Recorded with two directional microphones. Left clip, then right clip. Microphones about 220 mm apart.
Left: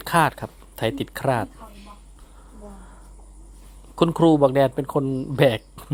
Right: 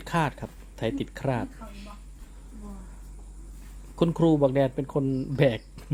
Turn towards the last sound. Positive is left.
turn(degrees=15)  # may be behind; listen again after turning